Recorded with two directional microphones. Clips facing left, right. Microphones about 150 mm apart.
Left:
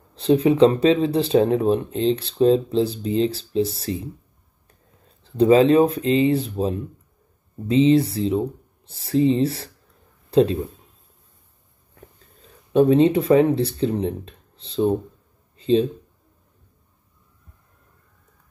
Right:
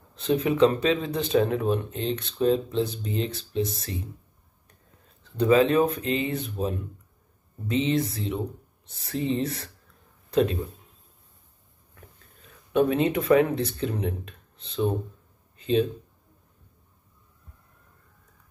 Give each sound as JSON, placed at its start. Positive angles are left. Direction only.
{"t": 0.1, "sound": "speech", "side_deg": 30}
{"t": 5.2, "sound": "speech", "side_deg": 30}
{"t": 11.9, "sound": "speech", "side_deg": 30}
{"t": 15.5, "sound": "a sound", "side_deg": 30}